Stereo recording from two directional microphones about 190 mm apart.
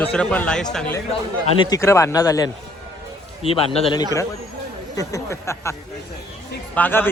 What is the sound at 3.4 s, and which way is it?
A man's voice, 30° left (ahead or behind).